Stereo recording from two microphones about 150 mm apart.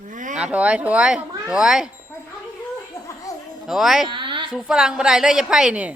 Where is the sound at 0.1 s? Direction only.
60° right (ahead or behind).